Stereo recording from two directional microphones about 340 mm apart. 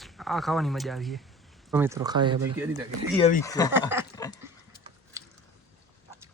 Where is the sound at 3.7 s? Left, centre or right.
Centre.